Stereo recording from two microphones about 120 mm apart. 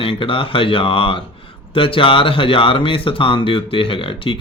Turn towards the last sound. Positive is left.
turn(degrees=45)  # may be behind; listen again after turning